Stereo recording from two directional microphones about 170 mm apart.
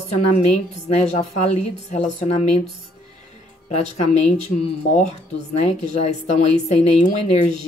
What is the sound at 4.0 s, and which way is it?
A woman's voice, 40° left (ahead or behind).